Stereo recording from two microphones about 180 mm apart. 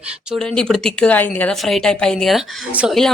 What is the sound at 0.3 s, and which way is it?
A woman's voice, 5° left (ahead or behind).